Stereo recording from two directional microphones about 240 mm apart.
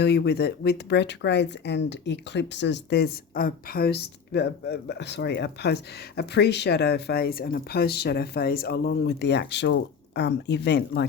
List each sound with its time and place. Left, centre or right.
0.0 s speech: left